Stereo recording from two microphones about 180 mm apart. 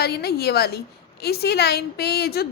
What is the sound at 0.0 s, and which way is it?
A woman's voice, 60° left (ahead or behind).